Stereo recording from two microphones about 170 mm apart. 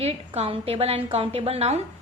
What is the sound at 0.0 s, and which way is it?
A woman's voice, 35° right (ahead or behind).